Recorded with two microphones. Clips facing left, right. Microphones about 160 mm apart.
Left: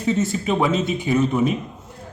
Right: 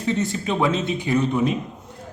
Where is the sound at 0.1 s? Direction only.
5° left (ahead or behind).